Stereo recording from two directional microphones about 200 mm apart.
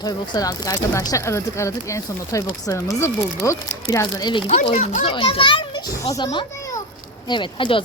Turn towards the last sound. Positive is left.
turn(degrees=25)  # may be behind; listen again after turning